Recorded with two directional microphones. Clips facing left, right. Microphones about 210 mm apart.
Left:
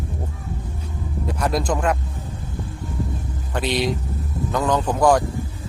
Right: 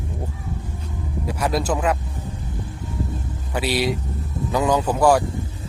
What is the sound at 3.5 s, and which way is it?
Speech, 5° right (ahead or behind).